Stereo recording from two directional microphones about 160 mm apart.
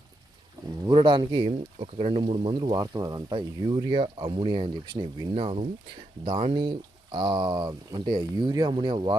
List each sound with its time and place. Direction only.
0.9 s speech: 30° right (ahead or behind)
1.5 s speech: 40° right (ahead or behind)
5.3 s speech: 40° right (ahead or behind)